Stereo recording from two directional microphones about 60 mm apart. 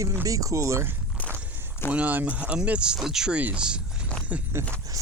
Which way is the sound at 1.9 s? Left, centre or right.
Right.